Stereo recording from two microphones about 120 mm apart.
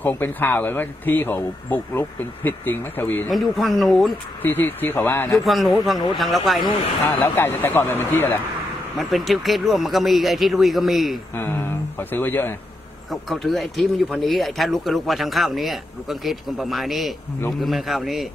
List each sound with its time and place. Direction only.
0.0 s speech: 15° left (ahead or behind)
3.3 s speech: centre (ahead or behind)
4.4 s speech: 15° left (ahead or behind)
5.2 s speech: centre (ahead or behind)
7.3 s speech: 20° left (ahead or behind)
8.9 s speech: centre (ahead or behind)
11.3 s speech: 20° left (ahead or behind)
13.1 s speech: centre (ahead or behind)